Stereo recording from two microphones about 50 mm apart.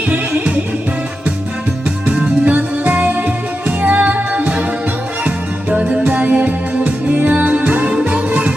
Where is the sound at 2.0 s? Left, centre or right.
Right.